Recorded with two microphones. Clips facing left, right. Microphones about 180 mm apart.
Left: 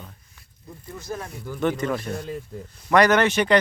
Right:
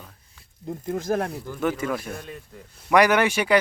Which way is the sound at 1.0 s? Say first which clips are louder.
Right 7 dB; 75° right (ahead or behind).